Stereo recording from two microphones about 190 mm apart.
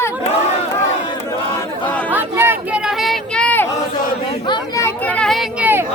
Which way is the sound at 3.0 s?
Centre (ahead or behind).